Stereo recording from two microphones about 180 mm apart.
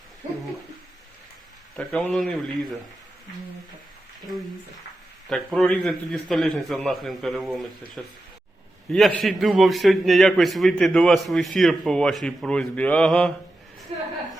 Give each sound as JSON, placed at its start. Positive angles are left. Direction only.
{"t": 1.7, "sound": "a man's voice", "side_deg": 5}
{"t": 5.5, "sound": "a man's voice", "side_deg": 5}
{"t": 13.9, "sound": "a sound", "side_deg": -35}